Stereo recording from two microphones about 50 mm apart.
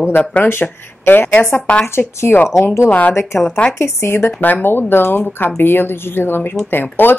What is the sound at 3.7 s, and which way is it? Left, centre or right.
Speech, left.